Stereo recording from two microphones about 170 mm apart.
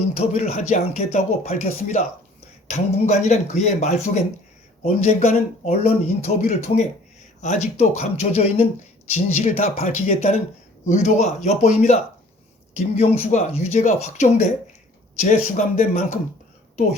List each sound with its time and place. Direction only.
0.2 s speech: 40° left (ahead or behind)